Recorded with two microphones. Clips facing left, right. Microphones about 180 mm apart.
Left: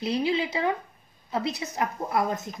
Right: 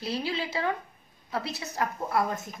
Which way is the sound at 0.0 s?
20° left (ahead or behind).